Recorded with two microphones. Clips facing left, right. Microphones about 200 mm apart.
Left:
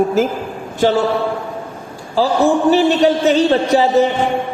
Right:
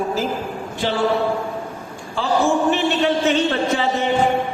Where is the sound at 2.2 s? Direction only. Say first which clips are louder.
Left 5 dB; 35° left (ahead or behind).